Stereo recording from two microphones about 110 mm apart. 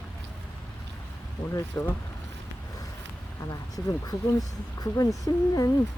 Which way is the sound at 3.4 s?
30° left (ahead or behind).